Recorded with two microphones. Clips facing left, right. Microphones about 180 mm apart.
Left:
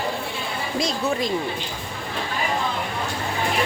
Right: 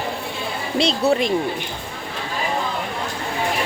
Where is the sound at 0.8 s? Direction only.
30° right (ahead or behind).